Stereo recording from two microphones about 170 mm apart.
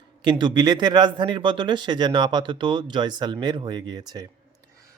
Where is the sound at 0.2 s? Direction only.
25° right (ahead or behind).